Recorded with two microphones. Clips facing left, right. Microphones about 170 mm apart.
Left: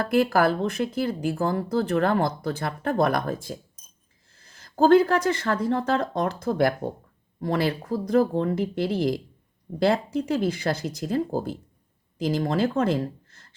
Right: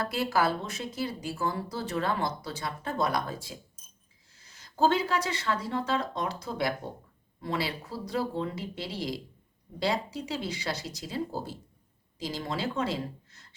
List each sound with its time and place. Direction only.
0.0 s speech: 55° left (ahead or behind)